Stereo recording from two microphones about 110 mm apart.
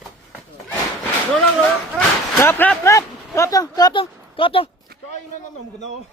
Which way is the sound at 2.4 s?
20° left (ahead or behind).